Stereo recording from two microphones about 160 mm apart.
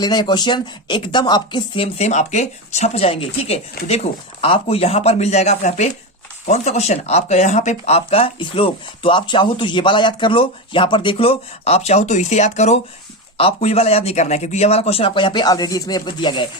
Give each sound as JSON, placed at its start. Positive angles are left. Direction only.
{"t": 0.0, "sound": "speech", "side_deg": 25}